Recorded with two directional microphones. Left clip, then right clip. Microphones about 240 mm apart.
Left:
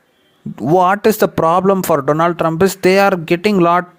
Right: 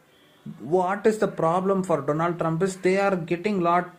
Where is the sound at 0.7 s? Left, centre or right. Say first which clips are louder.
Left 10 dB; left.